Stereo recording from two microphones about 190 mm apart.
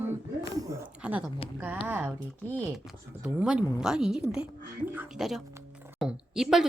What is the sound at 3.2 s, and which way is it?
Speech, 5° right (ahead or behind).